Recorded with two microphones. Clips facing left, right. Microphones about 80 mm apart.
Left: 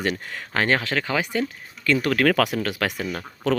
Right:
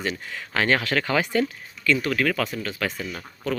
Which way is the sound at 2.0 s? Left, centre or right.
Left.